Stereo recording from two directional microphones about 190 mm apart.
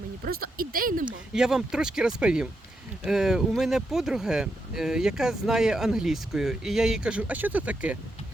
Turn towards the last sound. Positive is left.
turn(degrees=-5)  # may be behind; listen again after turning